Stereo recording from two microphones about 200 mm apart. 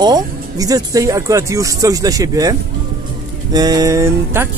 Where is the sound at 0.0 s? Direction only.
20° right (ahead or behind).